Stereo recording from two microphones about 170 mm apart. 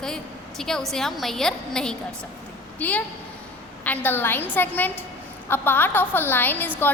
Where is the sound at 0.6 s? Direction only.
Centre (ahead or behind).